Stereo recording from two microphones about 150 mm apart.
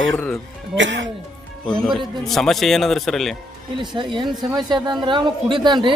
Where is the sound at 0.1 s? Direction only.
5° left (ahead or behind).